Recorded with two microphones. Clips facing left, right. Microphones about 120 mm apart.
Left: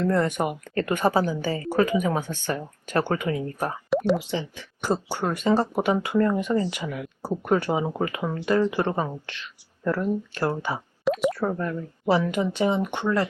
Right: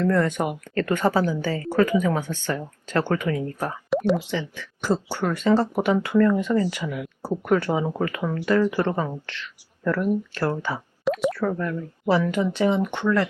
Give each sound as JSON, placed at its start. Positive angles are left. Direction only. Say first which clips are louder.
{"t": 0.0, "sound": "a woman's voice", "louder": "right 1 dB", "side_deg": 15}
{"t": 3.8, "sound": "plop", "louder": "right 1 dB", "side_deg": 0}
{"t": 4.3, "sound": "a woman's voice", "louder": "right 1 dB", "side_deg": 15}